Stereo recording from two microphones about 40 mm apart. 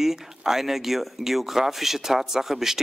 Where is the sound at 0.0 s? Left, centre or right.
Centre.